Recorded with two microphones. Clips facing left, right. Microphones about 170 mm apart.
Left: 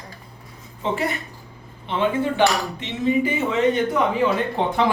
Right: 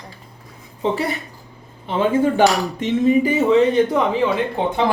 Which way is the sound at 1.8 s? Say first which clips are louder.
Right 4 dB; 45° right (ahead or behind).